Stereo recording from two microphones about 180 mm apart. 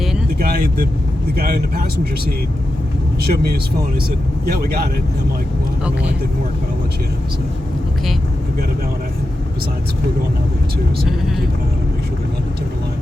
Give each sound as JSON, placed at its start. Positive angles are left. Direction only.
{"t": 0.3, "sound": "vehicle", "side_deg": -60}
{"t": 1.4, "sound": "speech", "side_deg": -60}
{"t": 3.2, "sound": "speech", "side_deg": -60}